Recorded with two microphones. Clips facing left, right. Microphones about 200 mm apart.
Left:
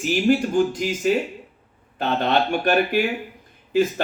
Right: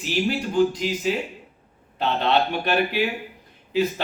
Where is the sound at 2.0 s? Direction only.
50° left (ahead or behind).